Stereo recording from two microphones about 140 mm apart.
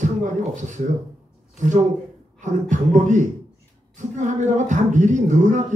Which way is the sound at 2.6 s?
60° right (ahead or behind).